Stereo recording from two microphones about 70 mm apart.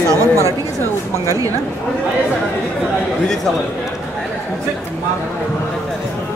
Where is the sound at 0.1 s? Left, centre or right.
Right.